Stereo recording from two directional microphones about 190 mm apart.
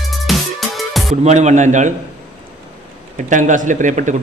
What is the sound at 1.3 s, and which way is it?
Speech, 40° right (ahead or behind).